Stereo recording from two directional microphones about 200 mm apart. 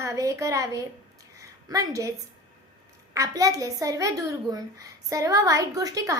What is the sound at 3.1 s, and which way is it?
A woman's voice, 15° right (ahead or behind).